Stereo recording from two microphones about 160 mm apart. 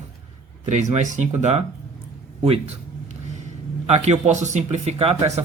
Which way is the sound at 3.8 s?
45° right (ahead or behind).